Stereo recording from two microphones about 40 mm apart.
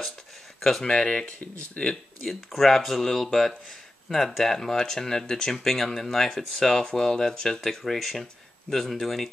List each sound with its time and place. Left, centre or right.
0.6 s speech: centre
0.8 s speech: left
1.8 s speech: left
2.2 s speech: centre
6.8 s speech: centre